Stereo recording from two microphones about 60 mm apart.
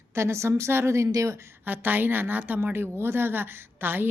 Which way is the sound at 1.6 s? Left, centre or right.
Right.